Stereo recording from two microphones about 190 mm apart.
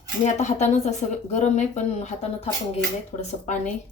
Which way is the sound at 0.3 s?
35° left (ahead or behind).